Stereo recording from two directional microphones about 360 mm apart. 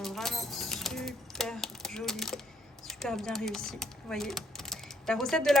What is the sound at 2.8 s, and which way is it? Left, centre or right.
Speech, centre.